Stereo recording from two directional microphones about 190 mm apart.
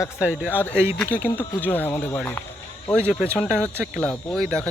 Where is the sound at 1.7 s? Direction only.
10° left (ahead or behind).